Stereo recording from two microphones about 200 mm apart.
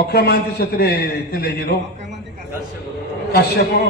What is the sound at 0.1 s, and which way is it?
Speech, 50° left (ahead or behind).